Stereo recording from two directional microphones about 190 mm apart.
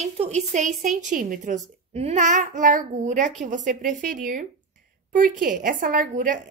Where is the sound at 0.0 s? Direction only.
35° right (ahead or behind).